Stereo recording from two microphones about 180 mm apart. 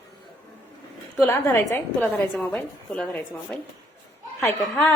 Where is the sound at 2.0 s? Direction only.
Centre (ahead or behind).